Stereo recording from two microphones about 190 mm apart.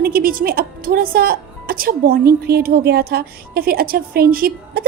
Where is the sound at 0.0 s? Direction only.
50° right (ahead or behind).